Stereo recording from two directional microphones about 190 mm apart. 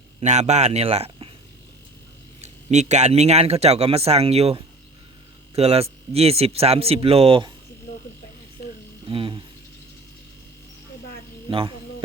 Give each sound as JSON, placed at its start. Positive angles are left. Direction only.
{"t": 0.2, "sound": "speech", "side_deg": -35}
{"t": 2.4, "sound": "speech", "side_deg": -35}
{"t": 9.0, "sound": "speech", "side_deg": -25}
{"t": 11.5, "sound": "mantra", "side_deg": -25}